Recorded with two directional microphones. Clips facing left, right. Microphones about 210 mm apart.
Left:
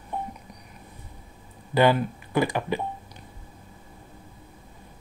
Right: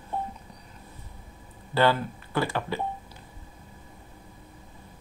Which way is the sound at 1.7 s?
15° left (ahead or behind).